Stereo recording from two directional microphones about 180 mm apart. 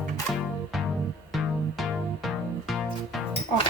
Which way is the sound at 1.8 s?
Centre (ahead or behind).